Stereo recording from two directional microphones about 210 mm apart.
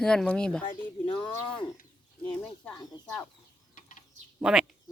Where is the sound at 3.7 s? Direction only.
35° left (ahead or behind).